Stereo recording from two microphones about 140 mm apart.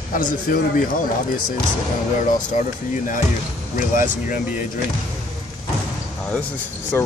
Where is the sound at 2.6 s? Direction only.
60° left (ahead or behind).